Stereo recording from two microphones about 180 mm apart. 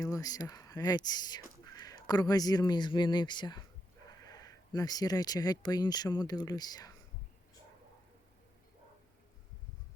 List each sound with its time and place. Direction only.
0.0 s speech: 20° left (ahead or behind)